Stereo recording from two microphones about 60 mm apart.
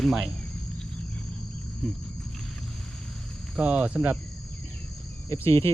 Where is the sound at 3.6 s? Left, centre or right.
Right.